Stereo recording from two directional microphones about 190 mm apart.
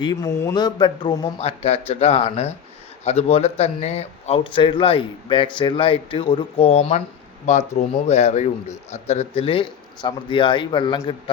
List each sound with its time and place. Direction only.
0.0 s a man's voice: 20° left (ahead or behind)